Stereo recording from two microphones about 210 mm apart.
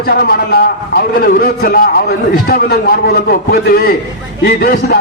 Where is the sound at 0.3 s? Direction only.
45° left (ahead or behind).